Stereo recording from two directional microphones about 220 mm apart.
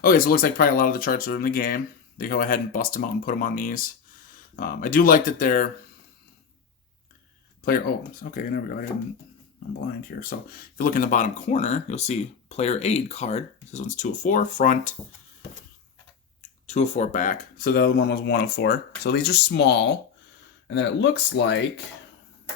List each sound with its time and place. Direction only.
0.0 s speech: 40° left (ahead or behind)
7.6 s speech: 40° left (ahead or behind)
10.1 s speech: 40° left (ahead or behind)
16.6 s speech: 30° left (ahead or behind); by 21.6 s 50° left (ahead or behind)